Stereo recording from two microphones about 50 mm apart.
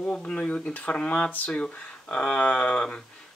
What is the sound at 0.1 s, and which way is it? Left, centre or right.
Speech, centre.